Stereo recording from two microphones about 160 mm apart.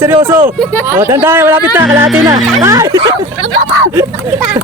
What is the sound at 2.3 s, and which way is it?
Speech, 20° right (ahead or behind).